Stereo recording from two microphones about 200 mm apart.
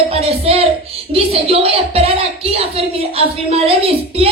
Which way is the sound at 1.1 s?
30° right (ahead or behind).